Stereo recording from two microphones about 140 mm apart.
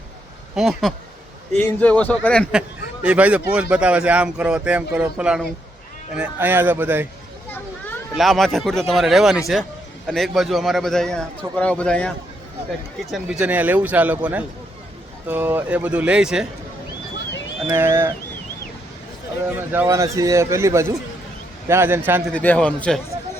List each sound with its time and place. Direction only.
0.5 s a man's voice: centre (ahead or behind)
2.5 s speech: 5° right (ahead or behind)
8.1 s a man's voice: centre (ahead or behind)
13.3 s speech: 10° right (ahead or behind)
17.7 s speech: 15° right (ahead or behind)
19.5 s speech: 15° right (ahead or behind)
22.3 s a man's voice: 10° left (ahead or behind)